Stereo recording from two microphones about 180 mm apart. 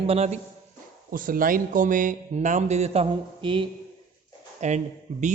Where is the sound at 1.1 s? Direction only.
50° right (ahead or behind); by 3.7 s 30° right (ahead or behind).